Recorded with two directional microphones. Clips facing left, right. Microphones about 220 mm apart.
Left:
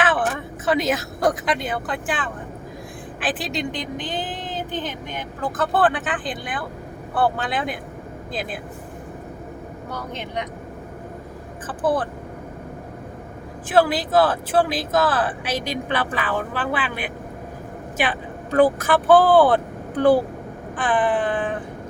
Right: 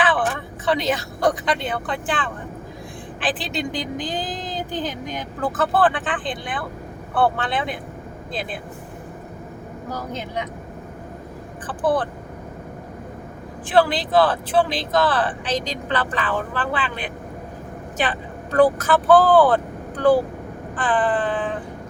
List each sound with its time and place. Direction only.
0.7 s speech: centre (ahead or behind)
4.0 s vehicle: 35° right (ahead or behind)
5.5 s speech: 5° right (ahead or behind)
11.6 s speech: centre (ahead or behind)
13.7 s a woman's voice: 5° left (ahead or behind)